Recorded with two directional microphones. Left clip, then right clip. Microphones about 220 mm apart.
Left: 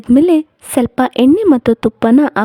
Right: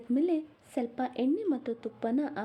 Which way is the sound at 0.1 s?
50° left (ahead or behind).